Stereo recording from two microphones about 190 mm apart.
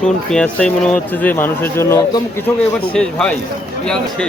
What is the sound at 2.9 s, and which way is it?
A man's voice, 5° left (ahead or behind).